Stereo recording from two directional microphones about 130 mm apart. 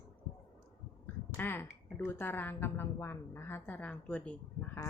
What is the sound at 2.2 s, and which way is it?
A woman's voice, 15° left (ahead or behind).